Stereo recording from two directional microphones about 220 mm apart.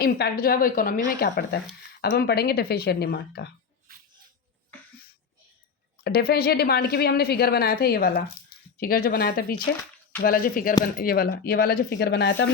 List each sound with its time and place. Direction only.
0.0 s a woman's voice: 45° left (ahead or behind)
6.0 s a woman's voice: 45° left (ahead or behind)